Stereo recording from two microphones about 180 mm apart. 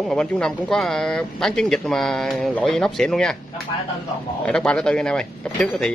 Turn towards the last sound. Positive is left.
turn(degrees=5)  # may be behind; listen again after turning